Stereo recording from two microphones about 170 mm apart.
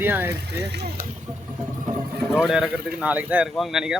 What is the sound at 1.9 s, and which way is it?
Vehicle, 45° right (ahead or behind).